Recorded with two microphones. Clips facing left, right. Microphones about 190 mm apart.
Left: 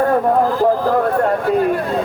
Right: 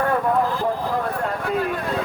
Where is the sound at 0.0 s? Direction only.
35° left (ahead or behind).